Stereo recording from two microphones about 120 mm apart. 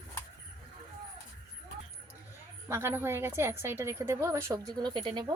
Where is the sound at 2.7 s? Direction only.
20° right (ahead or behind).